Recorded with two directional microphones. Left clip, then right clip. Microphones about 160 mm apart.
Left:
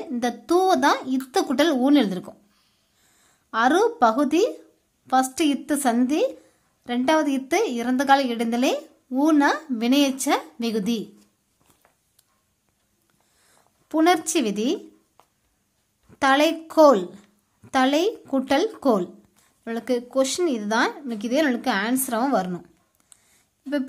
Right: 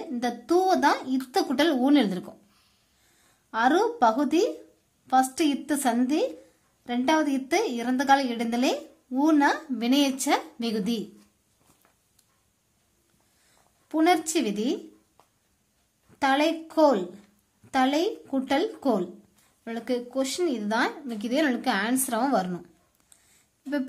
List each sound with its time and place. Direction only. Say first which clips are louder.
0.0 s a woman's voice: left 3 dB; 15° left (ahead or behind)
13.8 s a woman's voice: left 3 dB; 20° left (ahead or behind)